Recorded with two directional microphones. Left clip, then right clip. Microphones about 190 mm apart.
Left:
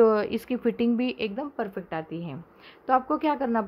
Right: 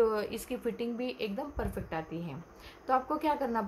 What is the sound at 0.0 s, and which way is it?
A woman's voice, 45° left (ahead or behind).